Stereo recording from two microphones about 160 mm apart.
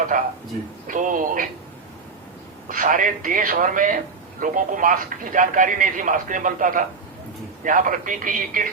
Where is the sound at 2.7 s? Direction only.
60° right (ahead or behind).